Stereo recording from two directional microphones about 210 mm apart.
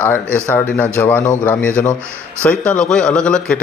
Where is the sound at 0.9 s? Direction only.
10° left (ahead or behind).